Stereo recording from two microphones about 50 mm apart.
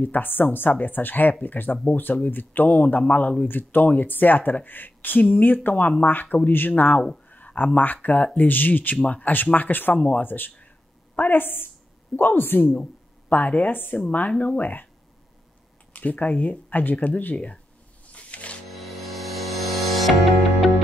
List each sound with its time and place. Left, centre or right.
0.0 s speech: left
9.9 s speech: left
10.2 s a woman's voice: left
15.9 s speech: left
18.0 s a sound: left
18.7 s music: centre